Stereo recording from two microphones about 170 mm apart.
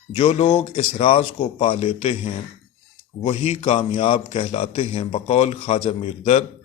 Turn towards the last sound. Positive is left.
turn(degrees=35)  # may be behind; listen again after turning